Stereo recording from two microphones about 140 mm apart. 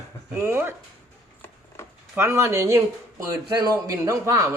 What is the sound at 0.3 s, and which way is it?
Speech, 15° right (ahead or behind).